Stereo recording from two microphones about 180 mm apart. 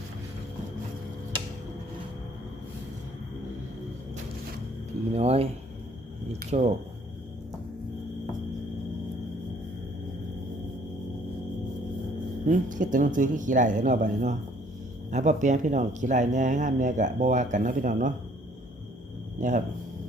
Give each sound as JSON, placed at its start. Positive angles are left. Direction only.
{"t": 5.1, "sound": "speech", "side_deg": -35}
{"t": 12.5, "sound": "speech", "side_deg": -45}
{"t": 19.4, "sound": "speech", "side_deg": -45}